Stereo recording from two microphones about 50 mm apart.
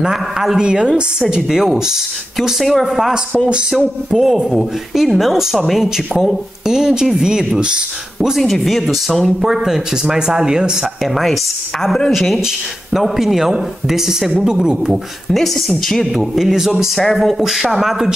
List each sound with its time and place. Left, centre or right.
0.0 s speech: centre
0.6 s speech: centre
8.4 s speech: centre
15.3 s speech: centre
16.3 s speech: centre
17.4 s speech: centre